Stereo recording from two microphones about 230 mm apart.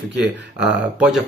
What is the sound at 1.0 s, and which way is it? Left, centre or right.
Speech, centre.